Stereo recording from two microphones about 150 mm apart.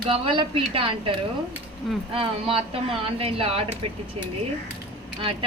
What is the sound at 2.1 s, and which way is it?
Speech, 40° right (ahead or behind).